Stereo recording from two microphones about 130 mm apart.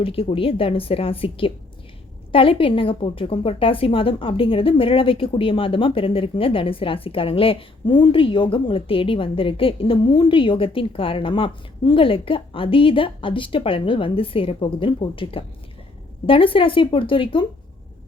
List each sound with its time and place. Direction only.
0.0 s a woman's voice: 45° left (ahead or behind)